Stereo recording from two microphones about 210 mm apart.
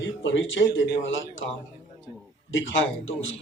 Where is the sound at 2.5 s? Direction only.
65° left (ahead or behind).